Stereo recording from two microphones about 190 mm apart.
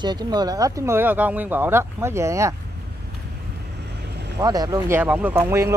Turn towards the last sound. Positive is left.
turn(degrees=-15)  # may be behind; listen again after turning